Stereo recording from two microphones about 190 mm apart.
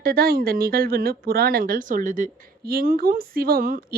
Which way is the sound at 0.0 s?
55° right (ahead or behind).